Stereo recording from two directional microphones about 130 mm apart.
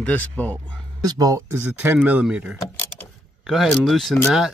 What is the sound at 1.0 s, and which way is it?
Speech, 30° right (ahead or behind).